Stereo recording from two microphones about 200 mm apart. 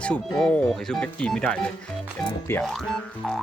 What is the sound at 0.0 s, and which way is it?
Speech, 5° left (ahead or behind).